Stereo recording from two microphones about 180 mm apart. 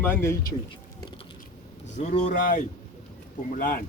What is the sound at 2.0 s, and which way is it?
Speech, 40° left (ahead or behind).